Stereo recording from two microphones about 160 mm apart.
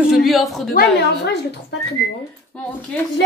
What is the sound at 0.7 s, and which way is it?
A woman's voice, 90° left.